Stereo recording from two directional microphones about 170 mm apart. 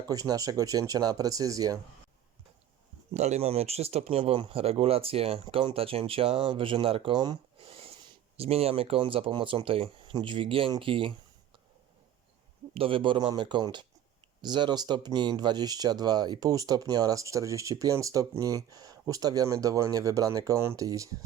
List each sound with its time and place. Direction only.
0.1 s speech: 20° right (ahead or behind)
3.1 s speech: 40° right (ahead or behind)
12.7 s speech: 30° right (ahead or behind)